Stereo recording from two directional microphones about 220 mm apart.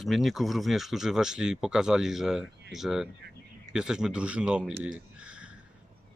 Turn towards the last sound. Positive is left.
turn(degrees=-5)  # may be behind; listen again after turning